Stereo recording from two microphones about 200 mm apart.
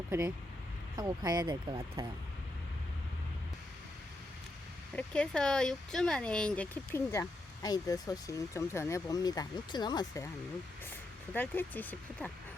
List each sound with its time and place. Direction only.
0.1 s speech: 15° right (ahead or behind)
4.9 s speech: 5° left (ahead or behind); by 10.2 s 20° left (ahead or behind)
11.3 s speech: 10° left (ahead or behind)